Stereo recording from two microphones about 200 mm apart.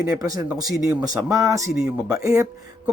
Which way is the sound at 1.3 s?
15° right (ahead or behind).